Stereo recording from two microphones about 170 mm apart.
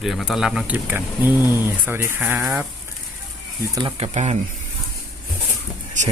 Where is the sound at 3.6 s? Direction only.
20° right (ahead or behind).